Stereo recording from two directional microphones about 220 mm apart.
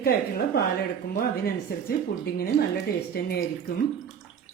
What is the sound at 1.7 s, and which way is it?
Speech, 40° left (ahead or behind).